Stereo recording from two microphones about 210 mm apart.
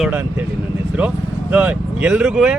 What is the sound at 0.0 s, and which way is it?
A man's voice, 10° right (ahead or behind).